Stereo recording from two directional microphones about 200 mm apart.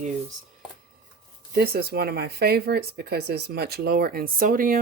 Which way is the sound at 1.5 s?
50° right (ahead or behind).